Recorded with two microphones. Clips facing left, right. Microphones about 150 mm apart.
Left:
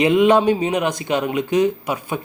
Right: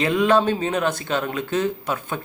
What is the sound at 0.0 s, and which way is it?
Speech, 20° left (ahead or behind).